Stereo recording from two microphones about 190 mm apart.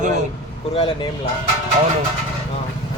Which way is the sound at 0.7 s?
25° left (ahead or behind).